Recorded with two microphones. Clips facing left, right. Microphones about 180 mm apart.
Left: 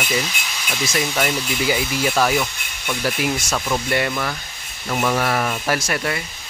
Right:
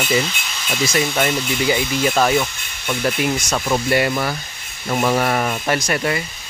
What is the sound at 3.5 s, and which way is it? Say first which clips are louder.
A man's voice: right 3 dB; 15° right (ahead or behind).